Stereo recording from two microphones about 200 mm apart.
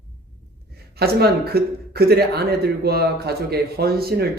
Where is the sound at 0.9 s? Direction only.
50° right (ahead or behind).